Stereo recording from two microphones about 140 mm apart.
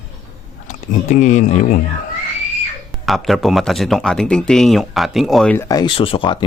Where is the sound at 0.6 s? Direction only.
60° left (ahead or behind).